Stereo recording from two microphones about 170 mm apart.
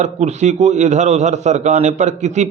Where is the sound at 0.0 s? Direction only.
40° right (ahead or behind).